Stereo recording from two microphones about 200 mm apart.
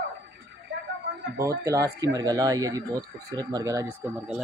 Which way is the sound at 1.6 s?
15° right (ahead or behind).